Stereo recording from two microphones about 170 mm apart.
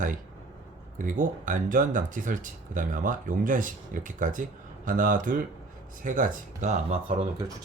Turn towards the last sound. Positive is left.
turn(degrees=-30)  # may be behind; listen again after turning